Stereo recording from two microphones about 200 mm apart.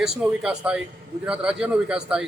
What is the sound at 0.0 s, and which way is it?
A man's voice, 5° right (ahead or behind).